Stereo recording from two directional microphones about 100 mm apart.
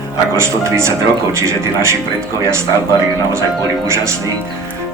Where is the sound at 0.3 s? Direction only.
30° right (ahead or behind).